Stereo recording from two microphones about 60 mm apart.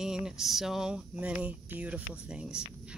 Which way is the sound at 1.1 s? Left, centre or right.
Centre.